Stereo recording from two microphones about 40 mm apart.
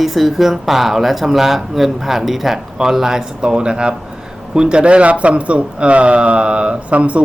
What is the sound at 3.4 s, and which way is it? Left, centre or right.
Speech, right.